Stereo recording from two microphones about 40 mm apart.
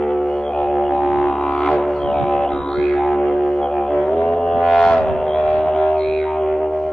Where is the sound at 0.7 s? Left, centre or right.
Centre.